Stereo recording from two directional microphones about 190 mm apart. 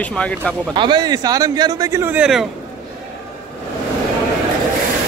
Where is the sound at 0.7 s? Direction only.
25° right (ahead or behind); by 2.5 s 5° right (ahead or behind).